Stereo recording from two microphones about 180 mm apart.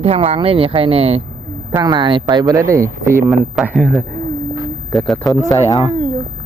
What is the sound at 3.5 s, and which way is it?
Speech, 5° right (ahead or behind).